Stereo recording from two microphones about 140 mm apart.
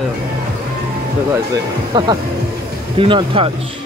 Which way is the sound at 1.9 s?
35° right (ahead or behind).